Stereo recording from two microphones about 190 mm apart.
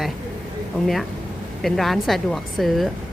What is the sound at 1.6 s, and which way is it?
A woman's voice, centre (ahead or behind).